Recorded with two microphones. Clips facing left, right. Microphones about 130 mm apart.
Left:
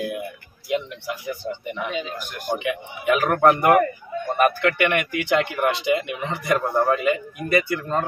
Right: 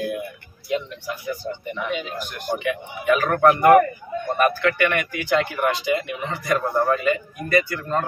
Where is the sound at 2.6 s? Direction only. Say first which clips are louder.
Even; 15° left (ahead or behind).